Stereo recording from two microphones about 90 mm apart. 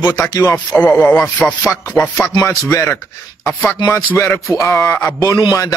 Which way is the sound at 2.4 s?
35° left (ahead or behind).